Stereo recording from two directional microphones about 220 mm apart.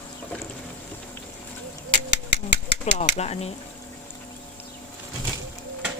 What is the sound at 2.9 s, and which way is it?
Speech, 30° left (ahead or behind).